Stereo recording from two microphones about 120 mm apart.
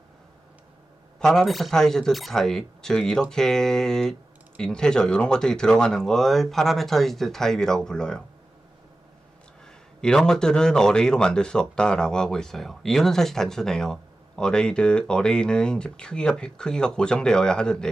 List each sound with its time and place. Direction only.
1.2 s speech: 5° left (ahead or behind)
9.6 s a man's voice: 5° left (ahead or behind)